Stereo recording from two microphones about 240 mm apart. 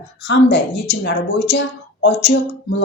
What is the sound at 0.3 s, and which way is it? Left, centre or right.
Speech, left.